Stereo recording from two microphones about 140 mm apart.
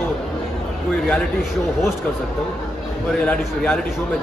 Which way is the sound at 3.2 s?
10° left (ahead or behind).